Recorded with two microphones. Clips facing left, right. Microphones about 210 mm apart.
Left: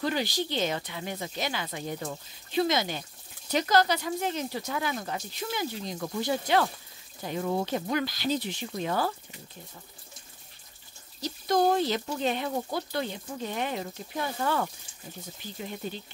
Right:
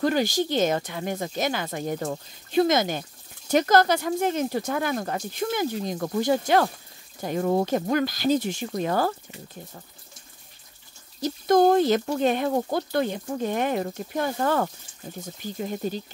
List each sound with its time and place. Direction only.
0.0 s speech: 45° right (ahead or behind)
11.1 s speech: 50° right (ahead or behind)